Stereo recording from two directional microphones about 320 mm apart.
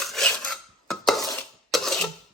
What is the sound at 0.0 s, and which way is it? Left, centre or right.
Filing, centre.